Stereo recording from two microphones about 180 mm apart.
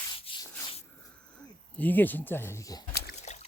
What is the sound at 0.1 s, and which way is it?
Sanding, 30° left (ahead or behind).